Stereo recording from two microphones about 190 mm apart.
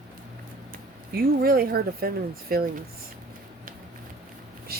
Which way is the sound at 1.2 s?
50° right (ahead or behind).